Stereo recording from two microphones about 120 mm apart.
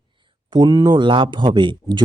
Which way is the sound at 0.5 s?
35° right (ahead or behind).